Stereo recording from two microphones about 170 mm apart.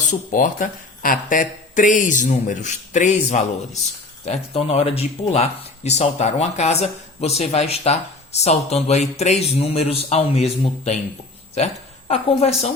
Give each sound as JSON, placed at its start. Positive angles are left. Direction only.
{"t": 0.0, "sound": "speech", "side_deg": 50}